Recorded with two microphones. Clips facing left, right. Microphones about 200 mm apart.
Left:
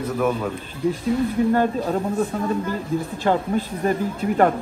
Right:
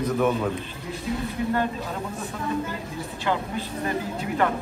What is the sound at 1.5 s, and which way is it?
Speech, 45° left (ahead or behind).